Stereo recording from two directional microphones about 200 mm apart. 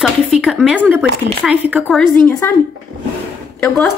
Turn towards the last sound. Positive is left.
turn(degrees=0)  # may be behind; listen again after turning